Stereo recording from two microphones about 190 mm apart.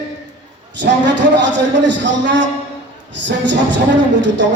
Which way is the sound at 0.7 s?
70° right (ahead or behind).